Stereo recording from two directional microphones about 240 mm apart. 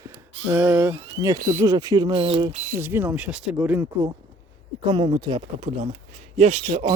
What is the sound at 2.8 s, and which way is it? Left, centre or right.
Speech, centre.